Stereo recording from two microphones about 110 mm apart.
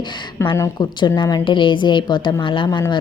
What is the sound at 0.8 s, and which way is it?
A woman's voice, 45° left (ahead or behind).